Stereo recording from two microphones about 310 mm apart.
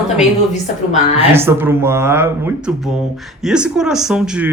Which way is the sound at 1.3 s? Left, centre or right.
Centre.